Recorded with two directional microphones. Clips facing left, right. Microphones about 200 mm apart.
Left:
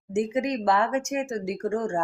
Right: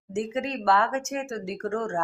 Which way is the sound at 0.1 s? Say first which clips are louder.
Left 4 dB; 15° left (ahead or behind).